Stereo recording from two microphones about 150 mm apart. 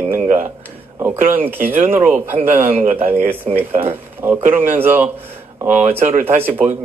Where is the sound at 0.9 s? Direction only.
15° right (ahead or behind).